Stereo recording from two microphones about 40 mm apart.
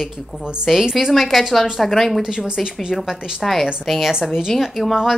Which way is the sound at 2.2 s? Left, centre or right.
Centre.